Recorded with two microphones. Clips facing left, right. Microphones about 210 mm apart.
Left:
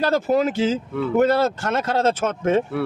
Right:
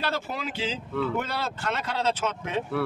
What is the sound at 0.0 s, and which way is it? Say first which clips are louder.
Speech: left 12 dB; 45° left (ahead or behind).